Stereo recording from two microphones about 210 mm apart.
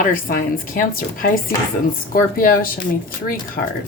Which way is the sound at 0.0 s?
40° left (ahead or behind).